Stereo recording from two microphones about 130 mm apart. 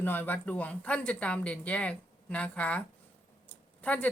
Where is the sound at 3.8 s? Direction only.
10° left (ahead or behind).